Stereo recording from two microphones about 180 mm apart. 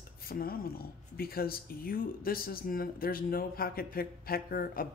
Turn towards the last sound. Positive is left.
turn(degrees=55)  # may be behind; listen again after turning